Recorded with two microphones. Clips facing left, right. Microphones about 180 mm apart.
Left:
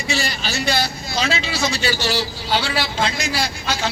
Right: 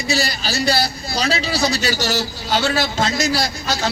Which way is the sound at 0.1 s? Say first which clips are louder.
Right 2 dB; 40° right (ahead or behind).